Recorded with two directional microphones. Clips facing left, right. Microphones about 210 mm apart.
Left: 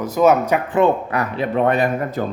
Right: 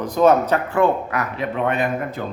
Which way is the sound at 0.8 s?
30° left (ahead or behind).